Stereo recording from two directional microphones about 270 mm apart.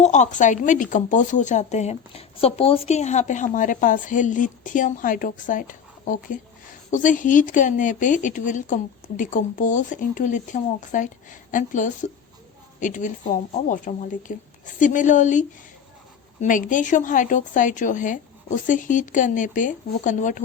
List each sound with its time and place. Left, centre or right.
0.0 s speech: left